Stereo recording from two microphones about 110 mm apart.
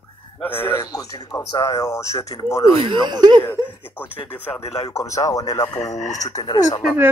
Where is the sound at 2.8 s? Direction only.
45° right (ahead or behind).